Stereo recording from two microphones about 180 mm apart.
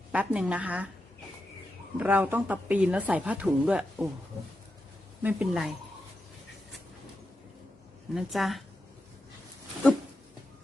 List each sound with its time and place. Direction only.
0.1 s speech: 5° right (ahead or behind)
2.0 s speech: 10° right (ahead or behind)
5.2 s a woman's voice: 5° right (ahead or behind)
8.1 s a woman's voice: centre (ahead or behind)